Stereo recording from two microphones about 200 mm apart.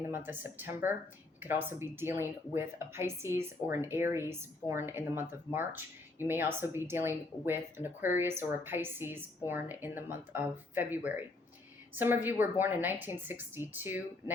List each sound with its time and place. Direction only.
0.1 s speech: 10° right (ahead or behind)